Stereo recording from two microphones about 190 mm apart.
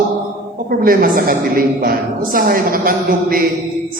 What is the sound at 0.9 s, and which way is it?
A woman's voice, 50° right (ahead or behind).